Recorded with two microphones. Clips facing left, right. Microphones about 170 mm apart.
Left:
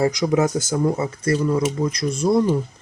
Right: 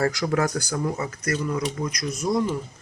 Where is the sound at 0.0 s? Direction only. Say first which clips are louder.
Left 4 dB; 20° left (ahead or behind).